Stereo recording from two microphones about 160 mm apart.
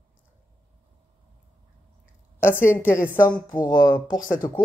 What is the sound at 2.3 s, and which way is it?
Speech, 15° left (ahead or behind).